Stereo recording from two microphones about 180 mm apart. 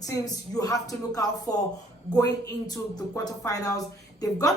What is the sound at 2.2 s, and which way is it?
A woman's voice, 20° left (ahead or behind).